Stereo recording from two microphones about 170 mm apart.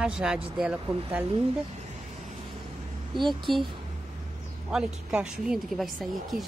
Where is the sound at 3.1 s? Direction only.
30° right (ahead or behind).